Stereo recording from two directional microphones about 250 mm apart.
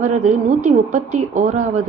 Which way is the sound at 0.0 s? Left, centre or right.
Right.